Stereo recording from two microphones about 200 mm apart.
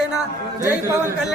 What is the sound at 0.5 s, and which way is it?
Speech, 15° right (ahead or behind).